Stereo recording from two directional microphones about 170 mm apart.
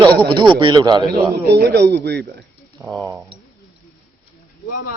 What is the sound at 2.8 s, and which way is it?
Speech, 10° right (ahead or behind).